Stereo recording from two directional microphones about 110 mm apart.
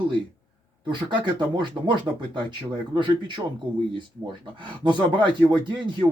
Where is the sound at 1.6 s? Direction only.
45° right (ahead or behind).